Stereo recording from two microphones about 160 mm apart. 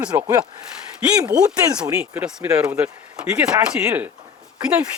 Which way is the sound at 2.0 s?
10° right (ahead or behind).